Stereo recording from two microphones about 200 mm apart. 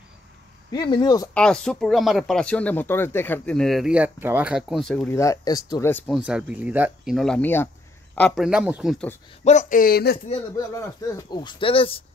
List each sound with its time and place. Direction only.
0.7 s speech: 20° left (ahead or behind)
1.3 s speech: 5° left (ahead or behind)
6.1 s speech: 5° right (ahead or behind)
8.5 s speech: 5° right (ahead or behind)
9.4 s speech: 35° left (ahead or behind)
10.8 s speech: 15° left (ahead or behind)